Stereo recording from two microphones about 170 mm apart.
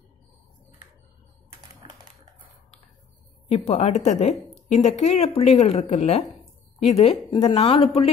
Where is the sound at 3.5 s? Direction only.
40° left (ahead or behind).